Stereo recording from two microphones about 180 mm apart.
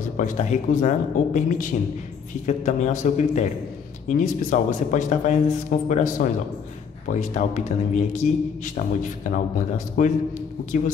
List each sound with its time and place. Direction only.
0.2 s a man's voice: 45° left (ahead or behind)